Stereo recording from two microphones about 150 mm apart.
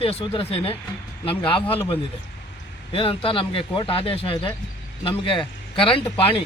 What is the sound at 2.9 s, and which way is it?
Speech, 35° left (ahead or behind).